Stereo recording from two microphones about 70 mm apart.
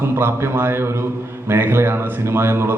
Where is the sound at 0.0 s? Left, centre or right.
Right.